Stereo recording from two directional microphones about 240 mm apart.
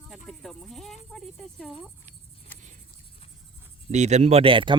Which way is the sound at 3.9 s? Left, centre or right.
Right.